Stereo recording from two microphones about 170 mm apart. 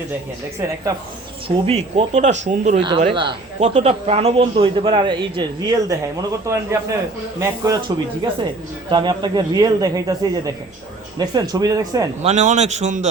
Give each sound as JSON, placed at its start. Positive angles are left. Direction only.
{"t": 1.5, "sound": "speech", "side_deg": -35}
{"t": 3.1, "sound": "a man's voice", "side_deg": -30}
{"t": 12.2, "sound": "speech", "side_deg": -40}